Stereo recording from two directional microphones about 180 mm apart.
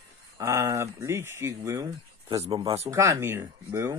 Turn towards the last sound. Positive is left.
turn(degrees=-15)  # may be behind; listen again after turning